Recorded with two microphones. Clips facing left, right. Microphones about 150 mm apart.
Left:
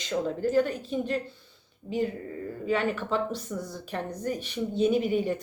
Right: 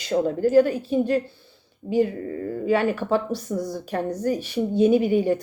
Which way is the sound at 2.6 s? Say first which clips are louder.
Right 6 dB; 40° right (ahead or behind).